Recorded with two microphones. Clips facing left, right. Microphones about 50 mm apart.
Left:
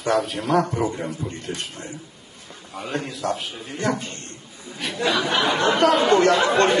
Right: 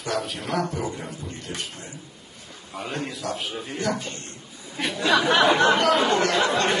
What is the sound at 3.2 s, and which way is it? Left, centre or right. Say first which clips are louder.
Speech: left 3 dB; left.